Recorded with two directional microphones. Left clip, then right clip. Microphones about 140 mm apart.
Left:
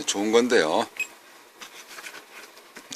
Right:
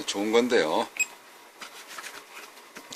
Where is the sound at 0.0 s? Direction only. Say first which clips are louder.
Left 3 dB; 35° left (ahead or behind).